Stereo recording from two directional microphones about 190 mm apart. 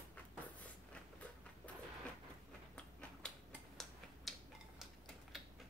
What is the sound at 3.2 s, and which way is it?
Tick-tock, 5° left (ahead or behind).